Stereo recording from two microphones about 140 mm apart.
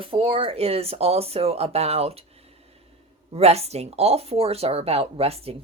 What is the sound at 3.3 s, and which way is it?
Speech, 45° right (ahead or behind).